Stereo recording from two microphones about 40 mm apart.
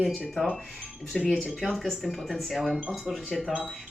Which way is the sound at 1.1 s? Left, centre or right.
Centre.